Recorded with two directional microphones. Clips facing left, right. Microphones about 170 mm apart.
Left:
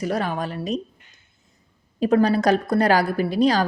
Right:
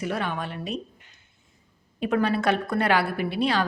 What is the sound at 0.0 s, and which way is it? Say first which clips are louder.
Speech: left 4 dB; 40° left (ahead or behind).